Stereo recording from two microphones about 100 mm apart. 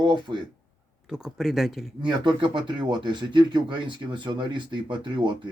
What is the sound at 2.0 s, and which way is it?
Speech, 50° right (ahead or behind).